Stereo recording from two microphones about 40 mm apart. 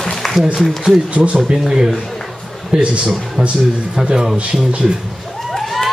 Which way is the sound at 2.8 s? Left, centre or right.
Right.